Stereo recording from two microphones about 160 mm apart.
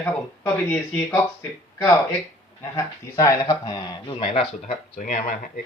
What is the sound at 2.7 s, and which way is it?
Speech, 20° left (ahead or behind).